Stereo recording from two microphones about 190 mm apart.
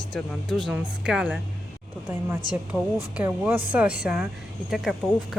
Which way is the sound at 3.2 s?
10° right (ahead or behind).